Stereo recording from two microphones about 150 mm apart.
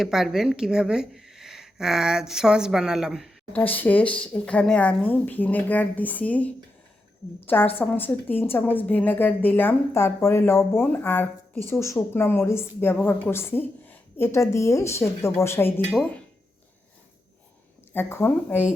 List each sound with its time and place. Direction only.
0.0 s speech: centre (ahead or behind)
3.5 s a woman's voice: 10° left (ahead or behind)
15.9 s speech: 5° left (ahead or behind)
17.9 s a woman's voice: 15° left (ahead or behind)